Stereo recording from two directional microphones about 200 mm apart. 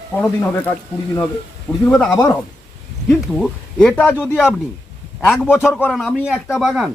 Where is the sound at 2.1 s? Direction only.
15° left (ahead or behind).